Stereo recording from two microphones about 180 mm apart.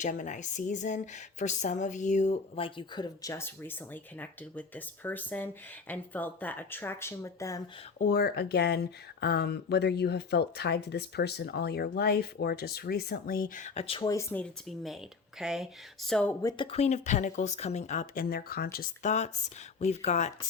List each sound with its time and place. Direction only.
0.0 s speech: 45° left (ahead or behind); by 7.6 s 15° left (ahead or behind)
7.9 s speech: 55° left (ahead or behind); by 14.1 s 30° left (ahead or behind)
14.1 s speech: 15° left (ahead or behind)
16.4 s speech: 20° left (ahead or behind)
16.7 s speech: 40° left (ahead or behind)